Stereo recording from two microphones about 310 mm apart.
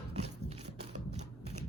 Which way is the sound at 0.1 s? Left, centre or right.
Centre.